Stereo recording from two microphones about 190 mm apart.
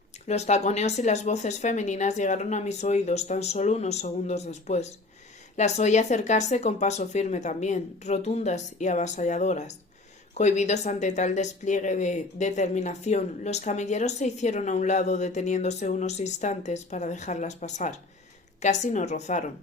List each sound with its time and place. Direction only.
0.3 s speech: 35° left (ahead or behind)